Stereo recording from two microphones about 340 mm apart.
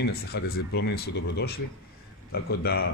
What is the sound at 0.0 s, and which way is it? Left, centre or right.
A man's voice, left.